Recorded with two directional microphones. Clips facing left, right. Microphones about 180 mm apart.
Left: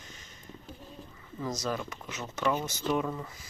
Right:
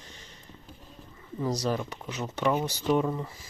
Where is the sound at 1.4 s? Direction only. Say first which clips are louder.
Right 5 dB; 35° right (ahead or behind).